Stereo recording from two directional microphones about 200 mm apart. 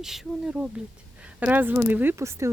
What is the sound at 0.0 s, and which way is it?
Speech, centre (ahead or behind).